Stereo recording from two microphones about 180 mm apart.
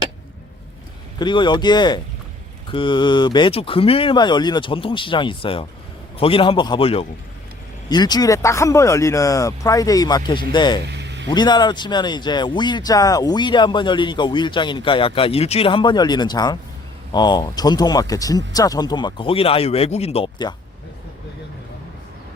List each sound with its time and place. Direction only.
1.2 s a man's voice: 25° left (ahead or behind)
10.8 s a sound: 75° right (ahead or behind)
11.3 s speech: 25° left (ahead or behind)